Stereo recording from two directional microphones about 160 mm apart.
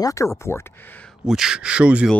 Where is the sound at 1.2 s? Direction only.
5° right (ahead or behind).